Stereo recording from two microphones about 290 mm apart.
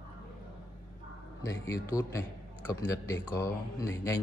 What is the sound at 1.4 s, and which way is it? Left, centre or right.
A man's voice, centre.